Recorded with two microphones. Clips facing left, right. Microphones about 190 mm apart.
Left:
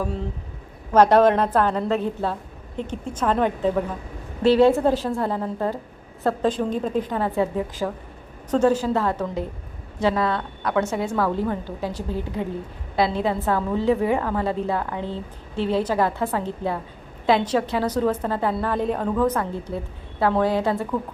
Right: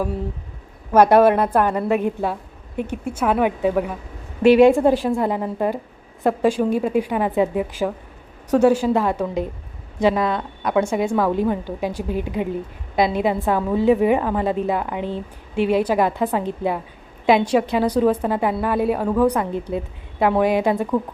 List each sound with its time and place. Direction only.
0.9 s a woman's voice: 10° right (ahead or behind)